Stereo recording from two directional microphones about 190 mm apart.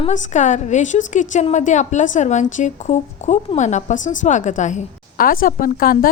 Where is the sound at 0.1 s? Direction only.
40° left (ahead or behind).